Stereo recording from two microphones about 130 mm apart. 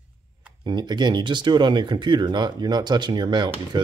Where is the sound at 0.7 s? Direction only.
35° right (ahead or behind).